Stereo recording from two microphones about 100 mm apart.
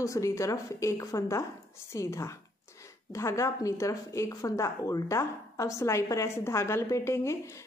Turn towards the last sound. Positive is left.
turn(degrees=25)  # may be behind; listen again after turning